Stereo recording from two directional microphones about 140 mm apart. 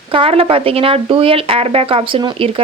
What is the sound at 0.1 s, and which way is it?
Speech, 40° right (ahead or behind).